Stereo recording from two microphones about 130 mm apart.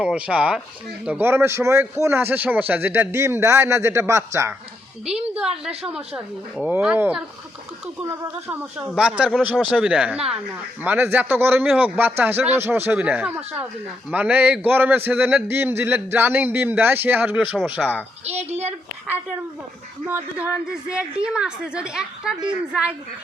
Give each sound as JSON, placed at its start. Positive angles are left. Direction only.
{"t": 0.0, "sound": "a man's voice", "side_deg": -5}
{"t": 5.3, "sound": "a man's voice", "side_deg": -5}
{"t": 8.0, "sound": "a man's voice", "side_deg": -20}
{"t": 18.3, "sound": "a woman's voice", "side_deg": -55}
{"t": 20.1, "sound": "a man's voice", "side_deg": -15}